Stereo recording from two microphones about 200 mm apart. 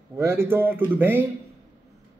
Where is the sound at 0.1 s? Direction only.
15° right (ahead or behind).